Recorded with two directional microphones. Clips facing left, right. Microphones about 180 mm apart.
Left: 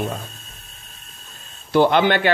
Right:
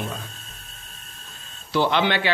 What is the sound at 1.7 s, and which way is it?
Speech, 50° left (ahead or behind).